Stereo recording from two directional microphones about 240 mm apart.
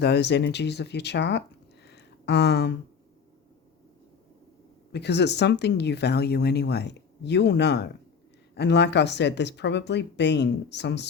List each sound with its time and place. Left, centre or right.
0.0 s speech: left
4.9 s speech: left